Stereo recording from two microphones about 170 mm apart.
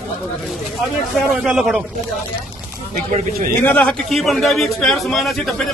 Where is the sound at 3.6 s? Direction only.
10° left (ahead or behind).